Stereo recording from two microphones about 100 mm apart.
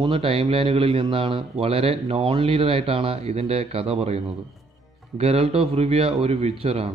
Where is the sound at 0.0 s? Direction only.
65° right (ahead or behind).